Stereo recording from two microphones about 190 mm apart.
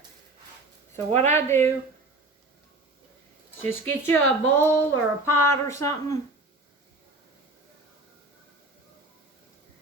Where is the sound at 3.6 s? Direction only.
10° left (ahead or behind).